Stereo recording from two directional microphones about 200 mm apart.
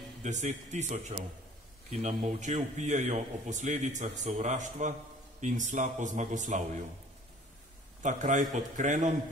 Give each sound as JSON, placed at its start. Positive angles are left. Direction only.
{"t": 0.2, "sound": "a man's voice", "side_deg": -35}
{"t": 8.0, "sound": "a man's voice", "side_deg": -40}